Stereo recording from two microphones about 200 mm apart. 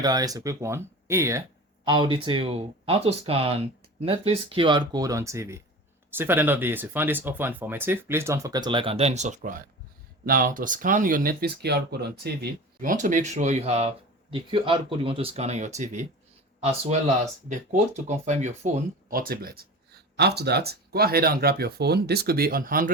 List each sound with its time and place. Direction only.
0.0 s speech: 20° right (ahead or behind); by 22.9 s 45° right (ahead or behind)